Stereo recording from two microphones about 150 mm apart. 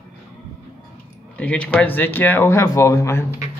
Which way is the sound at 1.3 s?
10° left (ahead or behind).